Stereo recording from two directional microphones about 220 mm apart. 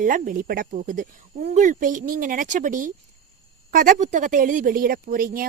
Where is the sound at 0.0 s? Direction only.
40° right (ahead or behind).